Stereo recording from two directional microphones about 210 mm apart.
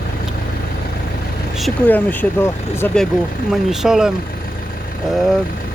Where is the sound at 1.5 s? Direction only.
5° left (ahead or behind).